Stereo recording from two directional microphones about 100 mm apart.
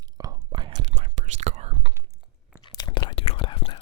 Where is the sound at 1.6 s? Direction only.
90° right.